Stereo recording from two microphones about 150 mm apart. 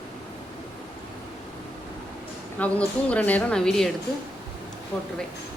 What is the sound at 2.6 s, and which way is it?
A woman's voice, 10° left (ahead or behind).